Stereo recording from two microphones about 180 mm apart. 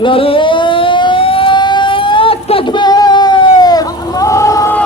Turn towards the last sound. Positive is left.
turn(degrees=15)  # may be behind; listen again after turning